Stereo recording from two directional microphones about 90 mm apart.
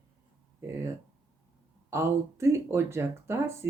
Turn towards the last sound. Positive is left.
turn(degrees=-30)  # may be behind; listen again after turning